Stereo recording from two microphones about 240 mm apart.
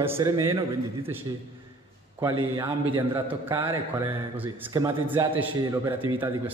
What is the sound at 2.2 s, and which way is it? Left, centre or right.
A man's voice, centre.